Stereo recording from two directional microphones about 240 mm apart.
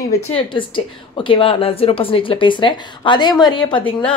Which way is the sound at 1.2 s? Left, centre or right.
Left.